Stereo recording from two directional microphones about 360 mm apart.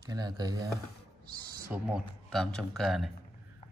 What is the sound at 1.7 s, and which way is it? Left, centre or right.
Speech, centre.